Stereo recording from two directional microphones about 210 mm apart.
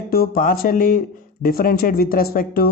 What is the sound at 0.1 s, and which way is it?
Speech, 45° left (ahead or behind).